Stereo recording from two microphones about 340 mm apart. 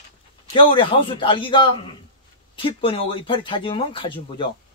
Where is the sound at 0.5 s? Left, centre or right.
Centre.